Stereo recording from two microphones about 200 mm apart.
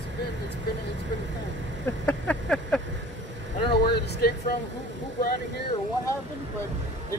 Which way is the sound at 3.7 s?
55° left (ahead or behind).